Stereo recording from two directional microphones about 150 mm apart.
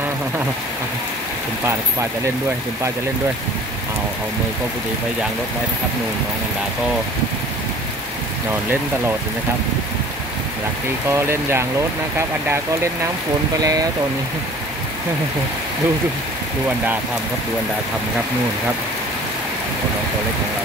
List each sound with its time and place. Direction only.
11.1 s speech: 15° right (ahead or behind)
13.6 s speech: 25° right (ahead or behind)